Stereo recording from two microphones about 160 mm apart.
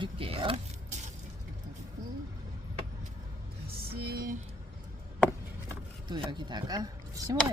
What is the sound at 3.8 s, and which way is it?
Music, 75° right (ahead or behind).